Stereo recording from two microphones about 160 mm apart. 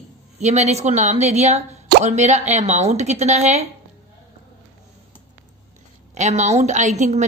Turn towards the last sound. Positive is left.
turn(degrees=-45)  # may be behind; listen again after turning